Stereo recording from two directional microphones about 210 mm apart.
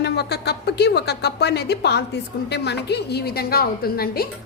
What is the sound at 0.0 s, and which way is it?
A woman's voice, 50° left (ahead or behind).